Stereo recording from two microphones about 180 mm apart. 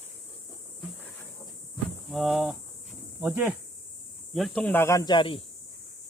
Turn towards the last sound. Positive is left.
turn(degrees=25)  # may be behind; listen again after turning